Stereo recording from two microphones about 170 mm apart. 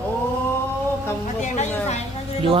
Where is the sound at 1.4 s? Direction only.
45° left (ahead or behind).